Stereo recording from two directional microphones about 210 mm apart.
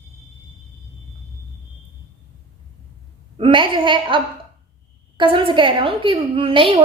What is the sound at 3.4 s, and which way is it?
A woman's voice, 25° right (ahead or behind).